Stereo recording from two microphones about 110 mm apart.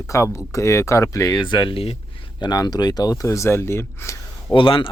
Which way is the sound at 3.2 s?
25° left (ahead or behind).